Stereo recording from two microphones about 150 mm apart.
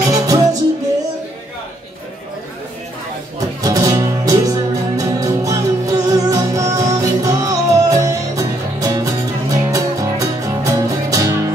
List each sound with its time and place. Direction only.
0.1 s music: 25° right (ahead or behind)
3.3 s music: 25° right (ahead or behind)